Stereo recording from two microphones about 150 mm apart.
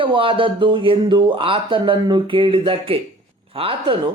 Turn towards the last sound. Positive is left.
turn(degrees=-40)  # may be behind; listen again after turning